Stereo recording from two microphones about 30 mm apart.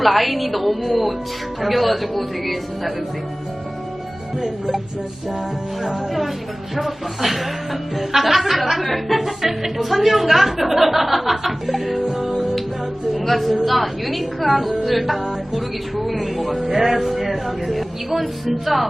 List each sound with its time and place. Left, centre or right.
0.0 s speech: centre
4.4 s speech: centre
5.8 s speech: centre
11.9 s music: centre
13.1 s a sound: centre
13.7 s speech: centre